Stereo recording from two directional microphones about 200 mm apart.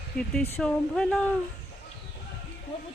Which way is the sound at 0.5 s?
5° left (ahead or behind).